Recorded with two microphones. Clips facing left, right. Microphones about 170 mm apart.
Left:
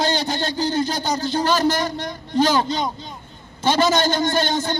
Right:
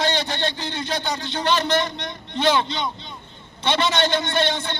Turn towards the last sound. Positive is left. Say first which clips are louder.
# left 2 dB
turn(degrees=40)  # may be behind; listen again after turning